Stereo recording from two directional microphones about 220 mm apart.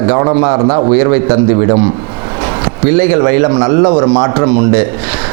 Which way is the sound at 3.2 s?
20° right (ahead or behind).